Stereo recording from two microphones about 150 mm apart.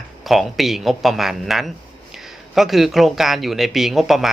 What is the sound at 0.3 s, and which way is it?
A man's voice, centre (ahead or behind).